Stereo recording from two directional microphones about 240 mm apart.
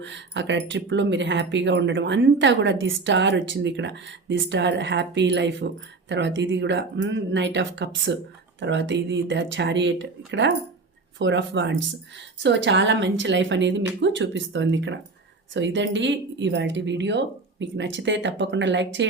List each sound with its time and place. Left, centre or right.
0.0 s speech: right